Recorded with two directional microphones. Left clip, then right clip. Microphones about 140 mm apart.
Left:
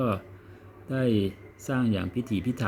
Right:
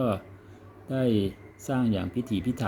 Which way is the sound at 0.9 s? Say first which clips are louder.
Even; 10° left (ahead or behind).